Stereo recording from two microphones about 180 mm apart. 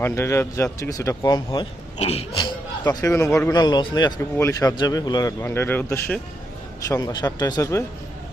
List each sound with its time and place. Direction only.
0.0 s speech: 15° left (ahead or behind)
2.0 s speech: 35° left (ahead or behind); by 7.9 s 15° left (ahead or behind)